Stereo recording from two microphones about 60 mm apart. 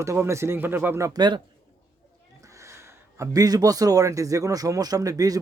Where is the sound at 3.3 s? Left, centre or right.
Right.